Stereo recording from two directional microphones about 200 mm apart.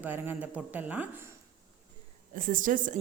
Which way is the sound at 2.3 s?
40° right (ahead or behind).